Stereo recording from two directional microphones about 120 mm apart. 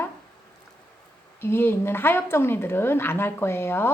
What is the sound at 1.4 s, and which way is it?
A woman's voice, 20° left (ahead or behind).